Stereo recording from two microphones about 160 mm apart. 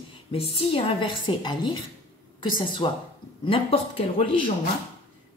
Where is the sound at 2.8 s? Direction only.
35° left (ahead or behind).